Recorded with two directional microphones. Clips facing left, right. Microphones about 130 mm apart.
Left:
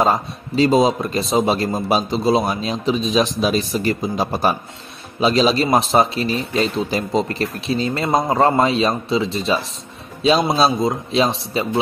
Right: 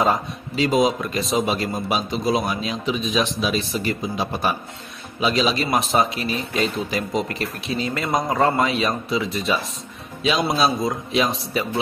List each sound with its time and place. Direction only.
0.0 s speech: 35° left (ahead or behind)
10.6 s a man's voice: 30° left (ahead or behind)